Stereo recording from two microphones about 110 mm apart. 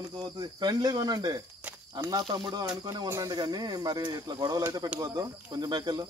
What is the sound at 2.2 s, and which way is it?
Speech, 45° right (ahead or behind).